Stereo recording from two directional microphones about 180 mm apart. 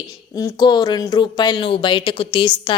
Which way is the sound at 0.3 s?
20° left (ahead or behind).